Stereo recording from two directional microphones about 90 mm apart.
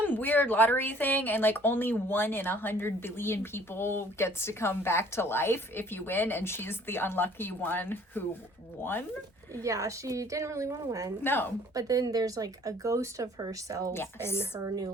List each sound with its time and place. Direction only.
0.0 s speech: 20° left (ahead or behind)
9.6 s speech: 35° right (ahead or behind)
11.2 s speech: 25° left (ahead or behind)
11.7 s speech: 40° right (ahead or behind)
13.9 s speech: 25° left (ahead or behind)